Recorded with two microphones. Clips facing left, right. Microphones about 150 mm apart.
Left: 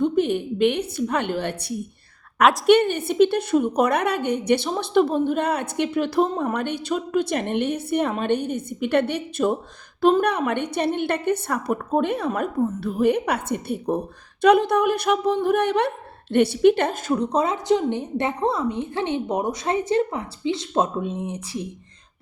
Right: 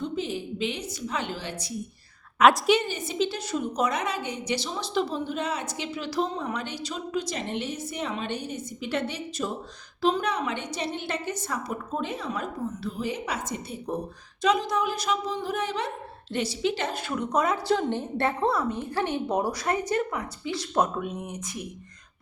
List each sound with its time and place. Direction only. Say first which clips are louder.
0.0 s a woman's voice: left 10 dB; 60° left (ahead or behind)
17.1 s a woman's voice: left 2 dB; 30° left (ahead or behind)